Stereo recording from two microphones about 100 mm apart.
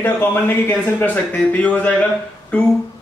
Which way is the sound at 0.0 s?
20° left (ahead or behind).